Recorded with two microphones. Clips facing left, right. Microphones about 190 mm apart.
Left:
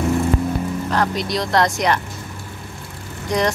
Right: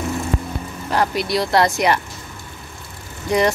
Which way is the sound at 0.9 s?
10° right (ahead or behind).